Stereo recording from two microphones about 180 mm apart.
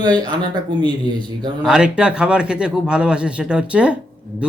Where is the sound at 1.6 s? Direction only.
5° right (ahead or behind).